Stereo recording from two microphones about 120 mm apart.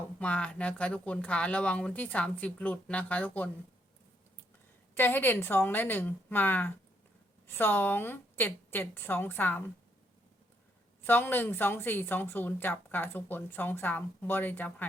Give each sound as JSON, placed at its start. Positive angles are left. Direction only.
{"t": 0.2, "sound": "a woman's voice", "side_deg": 10}
{"t": 4.9, "sound": "a woman's voice", "side_deg": 15}
{"t": 11.0, "sound": "a woman's voice", "side_deg": 15}